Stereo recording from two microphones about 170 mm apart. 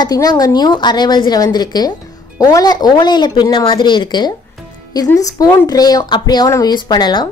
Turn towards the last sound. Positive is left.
turn(degrees=25)  # may be behind; listen again after turning